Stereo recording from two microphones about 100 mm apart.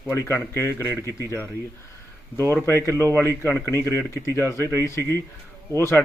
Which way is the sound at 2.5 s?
25° left (ahead or behind).